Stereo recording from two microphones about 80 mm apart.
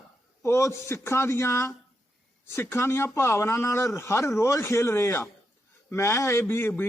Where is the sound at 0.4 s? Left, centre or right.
Left.